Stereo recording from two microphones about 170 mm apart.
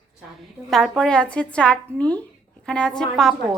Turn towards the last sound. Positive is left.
turn(degrees=0)  # may be behind; listen again after turning